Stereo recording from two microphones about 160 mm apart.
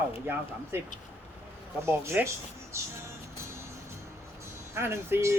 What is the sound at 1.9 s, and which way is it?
Speech, 15° right (ahead or behind).